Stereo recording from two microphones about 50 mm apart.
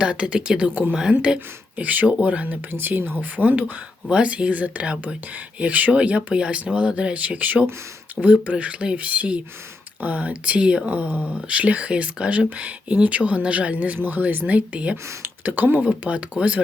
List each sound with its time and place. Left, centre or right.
0.0 s speech: right
1.8 s speech: right
2.7 s speech: right
4.1 s speech: right
10.8 s speech: right
15.2 s speech: right
15.8 s speech: right